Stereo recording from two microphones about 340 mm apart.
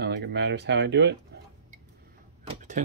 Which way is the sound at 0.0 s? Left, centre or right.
Right.